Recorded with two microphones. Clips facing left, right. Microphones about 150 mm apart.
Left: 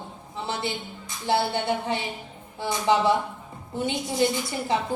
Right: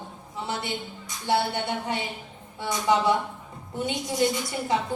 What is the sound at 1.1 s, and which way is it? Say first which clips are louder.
Music: left 1 dB; 25° left (ahead or behind).